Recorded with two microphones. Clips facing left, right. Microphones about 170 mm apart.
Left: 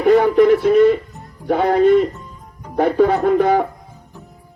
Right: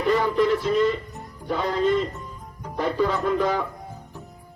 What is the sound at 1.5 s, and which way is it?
Speech, 60° left (ahead or behind).